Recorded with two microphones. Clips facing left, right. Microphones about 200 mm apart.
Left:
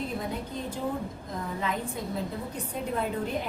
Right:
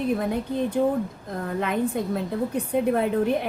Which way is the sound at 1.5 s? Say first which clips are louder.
Right 8 dB; 60° right (ahead or behind).